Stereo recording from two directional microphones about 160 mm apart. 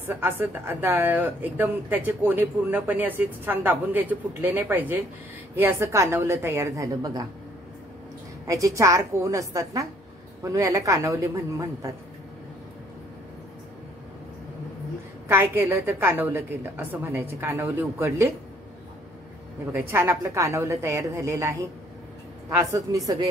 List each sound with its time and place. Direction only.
0.1 s speech: 15° right (ahead or behind)
8.5 s a woman's voice: 20° right (ahead or behind)
15.2 s speech: 15° right (ahead or behind)
19.7 s speech: 15° right (ahead or behind)
22.7 s a woman's voice: 20° right (ahead or behind)